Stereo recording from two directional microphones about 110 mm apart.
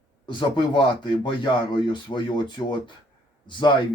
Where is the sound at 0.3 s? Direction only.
45° left (ahead or behind).